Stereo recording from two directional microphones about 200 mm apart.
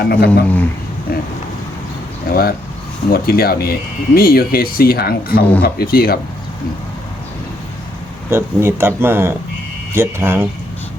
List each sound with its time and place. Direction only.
0.0 s speech: 50° left (ahead or behind)
0.4 s speech: 10° left (ahead or behind)
1.1 s speech: 50° left (ahead or behind)
2.3 s speech: 50° left (ahead or behind)
8.3 s speech: 10° right (ahead or behind)